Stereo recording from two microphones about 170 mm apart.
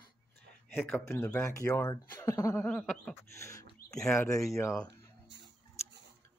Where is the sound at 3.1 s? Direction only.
15° left (ahead or behind).